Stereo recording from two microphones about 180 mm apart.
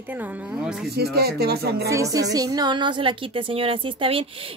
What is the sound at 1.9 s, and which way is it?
A woman's voice, 15° right (ahead or behind).